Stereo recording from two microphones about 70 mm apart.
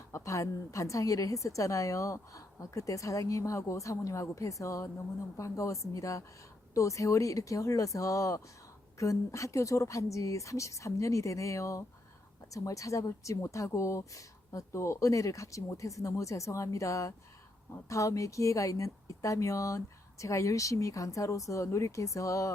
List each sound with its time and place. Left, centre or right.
0.1 s a woman's voice: left